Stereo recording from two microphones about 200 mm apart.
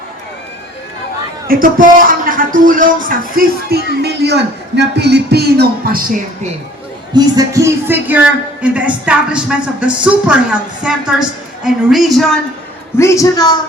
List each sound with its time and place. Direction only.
1.5 s speech: 45° right (ahead or behind)
7.1 s music: 15° right (ahead or behind)
8.6 s a woman's voice: 5° right (ahead or behind)
13.0 s a woman's voice: 15° left (ahead or behind)